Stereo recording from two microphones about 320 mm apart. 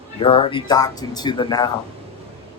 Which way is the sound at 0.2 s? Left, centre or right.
Centre.